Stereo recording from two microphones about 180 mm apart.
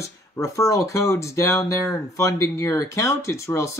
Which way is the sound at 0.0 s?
15° left (ahead or behind).